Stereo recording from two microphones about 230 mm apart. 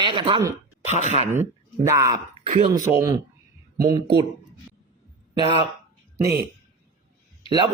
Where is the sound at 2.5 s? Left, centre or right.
Right.